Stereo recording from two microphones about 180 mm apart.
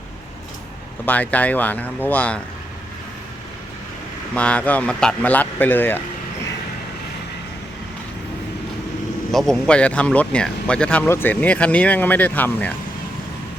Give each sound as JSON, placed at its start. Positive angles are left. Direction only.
{"t": 1.0, "sound": "speech", "side_deg": 10}
{"t": 4.4, "sound": "speech", "side_deg": 5}
{"t": 9.3, "sound": "speech", "side_deg": 0}